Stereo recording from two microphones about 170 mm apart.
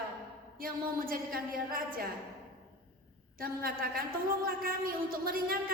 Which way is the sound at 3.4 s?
60° right (ahead or behind).